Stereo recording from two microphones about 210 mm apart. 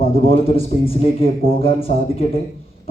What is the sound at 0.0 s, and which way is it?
A man's voice, 25° left (ahead or behind).